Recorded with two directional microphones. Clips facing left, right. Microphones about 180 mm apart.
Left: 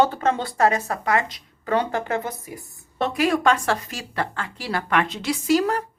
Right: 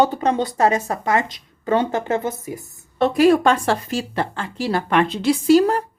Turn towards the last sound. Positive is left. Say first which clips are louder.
# right 6 dB
turn(degrees=-30)  # may be behind; listen again after turning